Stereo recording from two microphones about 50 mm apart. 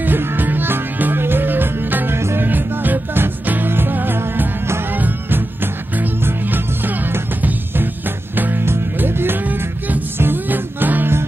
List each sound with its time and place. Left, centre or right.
0.0 s music: right
2.1 s music: right
2.4 s music: right
8.6 s music: right